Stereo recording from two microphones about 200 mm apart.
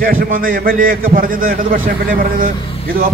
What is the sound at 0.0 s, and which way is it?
A man's voice, 45° right (ahead or behind).